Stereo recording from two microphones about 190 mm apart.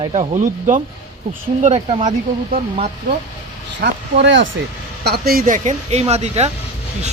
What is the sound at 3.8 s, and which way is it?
Speech, 65° right (ahead or behind).